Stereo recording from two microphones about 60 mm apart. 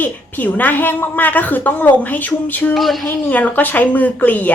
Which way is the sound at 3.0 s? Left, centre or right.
Left.